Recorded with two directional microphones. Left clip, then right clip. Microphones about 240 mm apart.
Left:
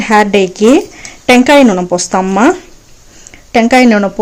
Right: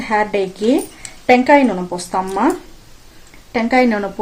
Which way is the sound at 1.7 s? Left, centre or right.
Left.